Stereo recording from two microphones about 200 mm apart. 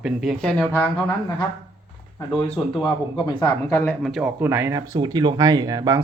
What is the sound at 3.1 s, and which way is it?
Speech, 25° left (ahead or behind).